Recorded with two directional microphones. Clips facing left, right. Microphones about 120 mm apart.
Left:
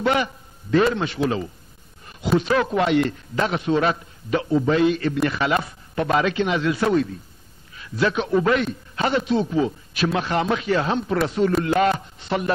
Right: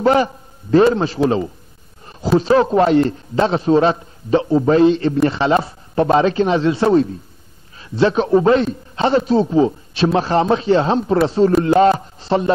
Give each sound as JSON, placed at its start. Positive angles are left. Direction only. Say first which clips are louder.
{"t": 0.0, "sound": "a man's voice", "louder": "right 7 dB", "side_deg": -35}